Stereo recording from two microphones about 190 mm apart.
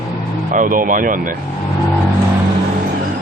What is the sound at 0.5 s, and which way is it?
Speech, 45° right (ahead or behind).